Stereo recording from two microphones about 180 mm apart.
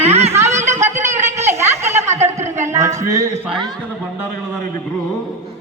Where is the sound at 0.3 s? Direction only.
15° right (ahead or behind).